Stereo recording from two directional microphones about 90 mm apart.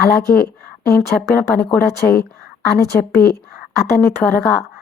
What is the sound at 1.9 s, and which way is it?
A woman's voice, 30° left (ahead or behind).